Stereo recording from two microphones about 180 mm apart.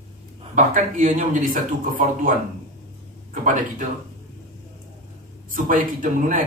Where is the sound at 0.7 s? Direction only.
50° right (ahead or behind).